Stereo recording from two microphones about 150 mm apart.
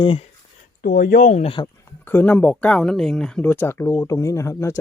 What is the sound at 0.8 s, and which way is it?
Speech, 80° left.